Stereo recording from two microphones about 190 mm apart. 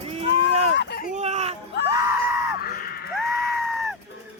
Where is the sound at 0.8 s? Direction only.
55° left (ahead or behind).